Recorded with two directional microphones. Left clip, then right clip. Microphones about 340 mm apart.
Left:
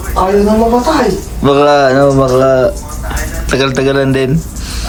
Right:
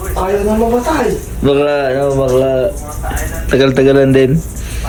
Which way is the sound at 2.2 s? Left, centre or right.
Centre.